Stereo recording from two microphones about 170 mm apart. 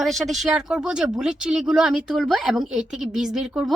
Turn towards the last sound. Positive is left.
turn(degrees=-5)  # may be behind; listen again after turning